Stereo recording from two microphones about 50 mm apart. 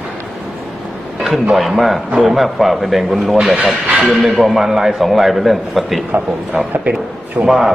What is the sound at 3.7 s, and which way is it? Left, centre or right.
Speech, centre.